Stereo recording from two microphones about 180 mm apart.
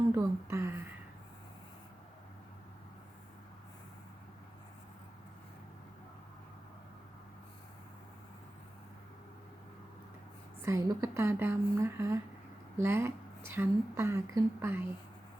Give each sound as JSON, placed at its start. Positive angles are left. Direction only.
{"t": 0.1, "sound": "speech", "side_deg": -15}
{"t": 10.6, "sound": "a woman's voice", "side_deg": -15}